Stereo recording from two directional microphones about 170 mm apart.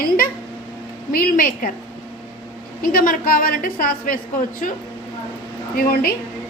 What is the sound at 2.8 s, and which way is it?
A woman's voice, 55° left (ahead or behind).